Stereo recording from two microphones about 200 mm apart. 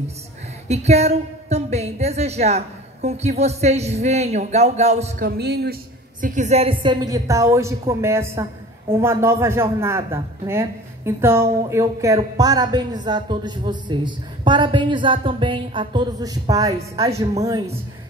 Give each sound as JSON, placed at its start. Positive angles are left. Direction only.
{"t": 0.7, "sound": "a woman's voice", "side_deg": -35}
{"t": 5.2, "sound": "speech", "side_deg": -55}
{"t": 6.2, "sound": "a woman's voice", "side_deg": -35}